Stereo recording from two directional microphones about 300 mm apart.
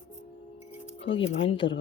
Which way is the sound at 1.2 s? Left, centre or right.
Left.